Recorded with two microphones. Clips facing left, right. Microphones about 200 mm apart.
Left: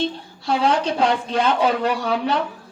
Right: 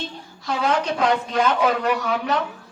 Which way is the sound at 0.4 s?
30° left (ahead or behind).